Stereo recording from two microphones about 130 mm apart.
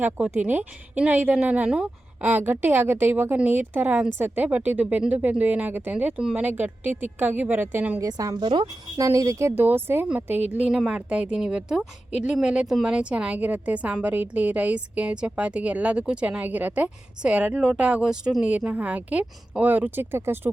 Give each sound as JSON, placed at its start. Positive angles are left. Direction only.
{"t": 0.0, "sound": "a woman's voice", "side_deg": -10}
{"t": 8.0, "sound": "a woman's voice", "side_deg": -30}